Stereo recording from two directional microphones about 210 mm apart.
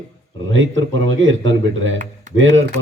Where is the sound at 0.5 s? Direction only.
65° right (ahead or behind).